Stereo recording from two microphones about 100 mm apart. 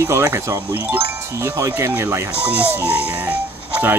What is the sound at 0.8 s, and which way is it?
Speech, 15° right (ahead or behind).